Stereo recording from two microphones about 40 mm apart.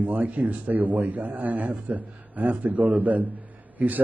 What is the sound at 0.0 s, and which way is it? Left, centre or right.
A man's voice, right.